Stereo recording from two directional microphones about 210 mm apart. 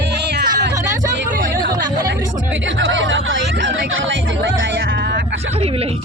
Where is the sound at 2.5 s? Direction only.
60° right (ahead or behind).